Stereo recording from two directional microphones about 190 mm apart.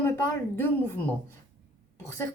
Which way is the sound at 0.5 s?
10° left (ahead or behind).